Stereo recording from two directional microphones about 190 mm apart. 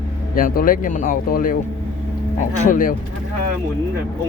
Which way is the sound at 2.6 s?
45° left (ahead or behind).